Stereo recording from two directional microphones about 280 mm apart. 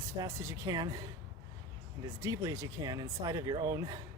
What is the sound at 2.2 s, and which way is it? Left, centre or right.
Speech, centre.